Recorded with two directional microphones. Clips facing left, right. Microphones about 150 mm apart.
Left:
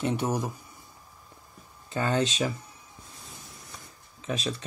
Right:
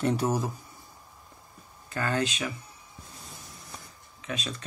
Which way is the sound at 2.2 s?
35° left (ahead or behind).